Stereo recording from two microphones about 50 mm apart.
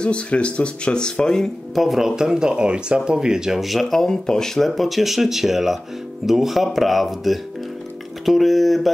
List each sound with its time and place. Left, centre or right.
0.0 s speech: left
1.8 s speech: centre
3.9 s speech: centre